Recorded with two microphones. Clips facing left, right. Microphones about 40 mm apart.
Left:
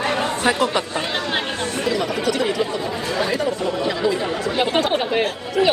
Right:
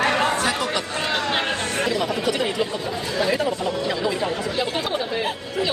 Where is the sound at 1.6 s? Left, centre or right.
Right.